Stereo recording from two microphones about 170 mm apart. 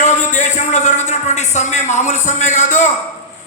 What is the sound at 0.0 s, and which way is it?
A man's voice, 45° left (ahead or behind).